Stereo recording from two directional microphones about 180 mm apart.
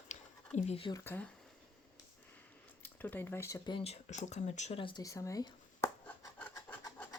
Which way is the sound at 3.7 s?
30° left (ahead or behind).